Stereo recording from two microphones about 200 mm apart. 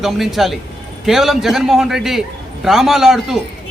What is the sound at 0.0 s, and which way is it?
A man's voice, centre (ahead or behind).